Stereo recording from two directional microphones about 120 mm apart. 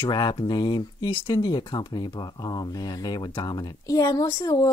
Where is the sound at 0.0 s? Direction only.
40° left (ahead or behind).